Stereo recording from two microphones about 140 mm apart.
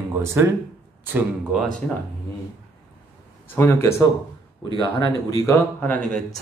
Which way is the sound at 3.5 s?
15° left (ahead or behind).